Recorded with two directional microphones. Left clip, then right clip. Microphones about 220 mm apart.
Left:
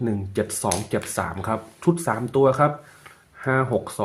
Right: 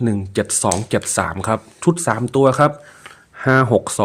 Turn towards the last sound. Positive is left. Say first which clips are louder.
# right 8 dB
turn(degrees=-45)  # may be behind; listen again after turning